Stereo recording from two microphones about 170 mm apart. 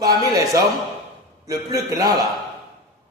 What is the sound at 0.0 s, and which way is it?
Speech, 20° right (ahead or behind).